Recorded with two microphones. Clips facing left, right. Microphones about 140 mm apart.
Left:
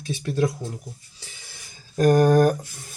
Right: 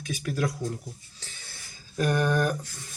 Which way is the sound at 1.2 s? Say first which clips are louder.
Left 1 dB; 15° left (ahead or behind).